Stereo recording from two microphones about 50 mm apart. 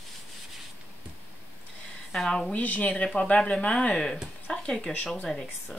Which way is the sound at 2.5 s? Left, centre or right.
Left.